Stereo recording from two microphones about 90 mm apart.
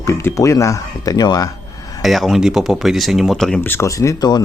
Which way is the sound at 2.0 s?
Centre (ahead or behind).